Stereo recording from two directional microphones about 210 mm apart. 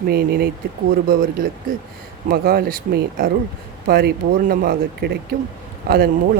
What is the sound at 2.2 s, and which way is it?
Speech, 45° right (ahead or behind).